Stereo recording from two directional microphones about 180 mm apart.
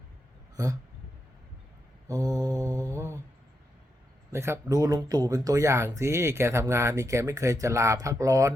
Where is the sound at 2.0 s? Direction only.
20° right (ahead or behind).